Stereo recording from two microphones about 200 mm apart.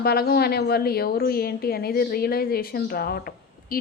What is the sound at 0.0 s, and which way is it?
A woman's voice, 50° left (ahead or behind).